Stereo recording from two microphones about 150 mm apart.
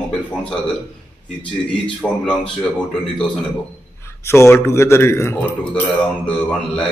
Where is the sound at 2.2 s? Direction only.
5° left (ahead or behind).